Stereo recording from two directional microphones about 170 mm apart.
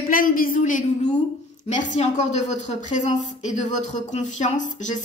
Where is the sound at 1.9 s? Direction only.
40° left (ahead or behind).